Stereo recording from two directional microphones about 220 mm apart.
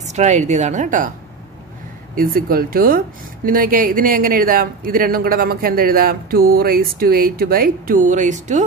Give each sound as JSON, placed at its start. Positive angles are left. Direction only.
{"t": 0.0, "sound": "speech", "side_deg": -30}
{"t": 2.1, "sound": "speech", "side_deg": -40}